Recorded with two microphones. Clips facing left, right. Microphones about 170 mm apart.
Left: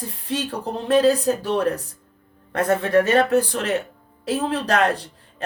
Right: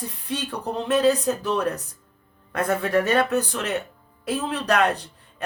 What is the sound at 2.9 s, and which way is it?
Speech, 45° left (ahead or behind).